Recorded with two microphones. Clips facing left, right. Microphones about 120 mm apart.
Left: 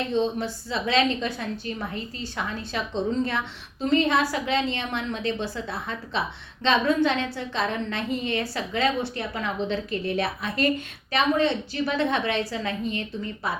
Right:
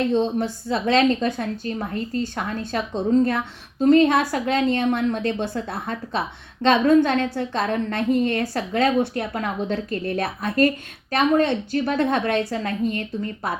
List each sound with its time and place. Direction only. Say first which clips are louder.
0.1 s a woman's voice: right 4 dB; 50° right (ahead or behind)